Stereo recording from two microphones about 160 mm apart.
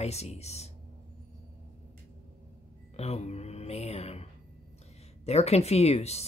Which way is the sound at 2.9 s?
40° left (ahead or behind).